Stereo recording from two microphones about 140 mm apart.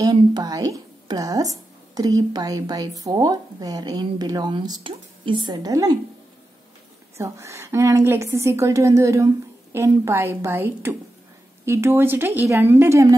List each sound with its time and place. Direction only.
0.0 s a woman's voice: 30° right (ahead or behind)
7.2 s a woman's voice: 20° right (ahead or behind)